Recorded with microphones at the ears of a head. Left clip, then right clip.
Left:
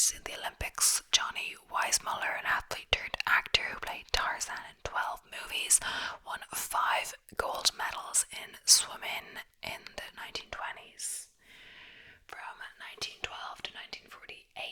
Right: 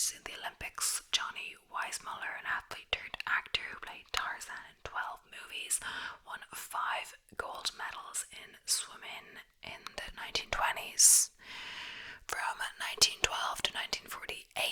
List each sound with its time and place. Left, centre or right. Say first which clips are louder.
0.8 s whispering: left 6 dB; left
9.9 s whispering: even; centre
10.5 s whispering: right 7 dB; right